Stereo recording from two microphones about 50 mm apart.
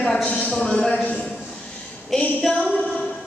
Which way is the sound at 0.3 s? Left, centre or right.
Left.